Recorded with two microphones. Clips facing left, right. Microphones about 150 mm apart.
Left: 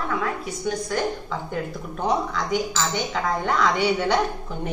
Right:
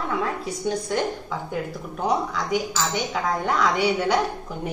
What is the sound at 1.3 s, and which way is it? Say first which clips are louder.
A woman's voice: even; 5° right (ahead or behind).